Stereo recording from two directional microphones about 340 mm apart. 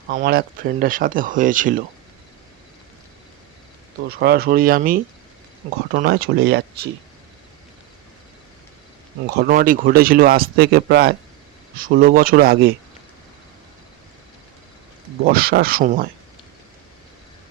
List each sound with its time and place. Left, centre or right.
0.1 s speech: right
4.2 s speech: right
9.2 s speech: right
15.3 s speech: right